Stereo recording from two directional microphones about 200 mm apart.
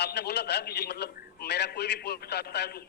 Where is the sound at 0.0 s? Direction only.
55° left (ahead or behind).